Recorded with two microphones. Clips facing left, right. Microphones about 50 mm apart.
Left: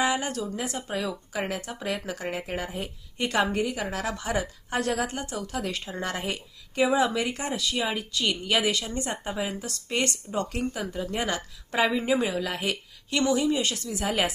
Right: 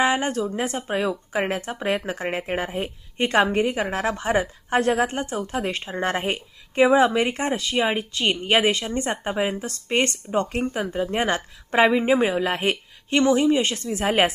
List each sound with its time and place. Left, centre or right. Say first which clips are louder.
0.0 s speech: right 5 dB; right